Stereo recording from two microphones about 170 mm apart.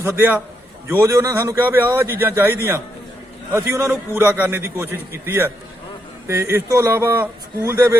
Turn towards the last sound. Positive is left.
turn(degrees=-20)  # may be behind; listen again after turning